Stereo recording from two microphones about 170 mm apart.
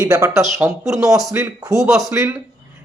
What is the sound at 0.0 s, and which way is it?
A man's voice, 15° right (ahead or behind).